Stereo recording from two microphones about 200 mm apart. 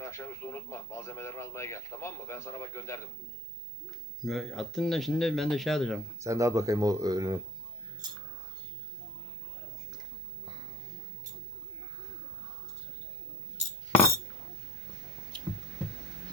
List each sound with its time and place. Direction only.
0.0 s speech: 15° left (ahead or behind)
4.2 s speech: centre (ahead or behind)
6.1 s speech: 15° right (ahead or behind)
15.3 s a sound: 25° right (ahead or behind)